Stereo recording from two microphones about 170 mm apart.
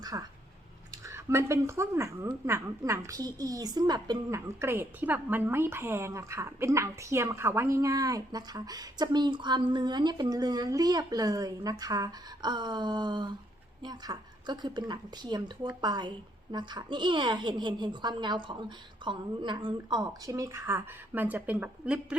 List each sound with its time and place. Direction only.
0.0 s a woman's voice: 20° right (ahead or behind)
4.4 s a woman's voice: 15° right (ahead or behind)